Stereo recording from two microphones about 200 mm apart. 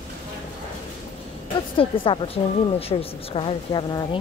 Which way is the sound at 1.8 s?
30° left (ahead or behind).